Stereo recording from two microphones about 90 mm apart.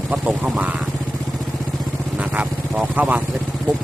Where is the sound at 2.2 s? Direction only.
15° right (ahead or behind).